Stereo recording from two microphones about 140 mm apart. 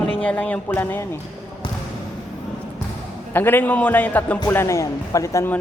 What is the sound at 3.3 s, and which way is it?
Speech, 15° left (ahead or behind).